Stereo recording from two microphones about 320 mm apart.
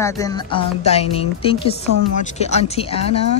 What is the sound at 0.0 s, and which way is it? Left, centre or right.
A woman's voice, centre.